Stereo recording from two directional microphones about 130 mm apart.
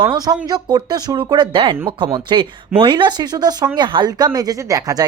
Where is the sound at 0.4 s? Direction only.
35° right (ahead or behind).